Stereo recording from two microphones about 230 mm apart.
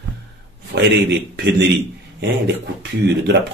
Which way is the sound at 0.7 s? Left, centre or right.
Right.